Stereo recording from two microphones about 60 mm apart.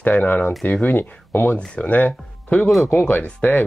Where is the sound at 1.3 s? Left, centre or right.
Left.